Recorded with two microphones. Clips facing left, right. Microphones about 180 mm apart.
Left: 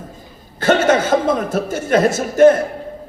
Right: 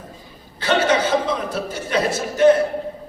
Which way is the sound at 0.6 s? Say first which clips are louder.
Left 4 dB; 45° left (ahead or behind).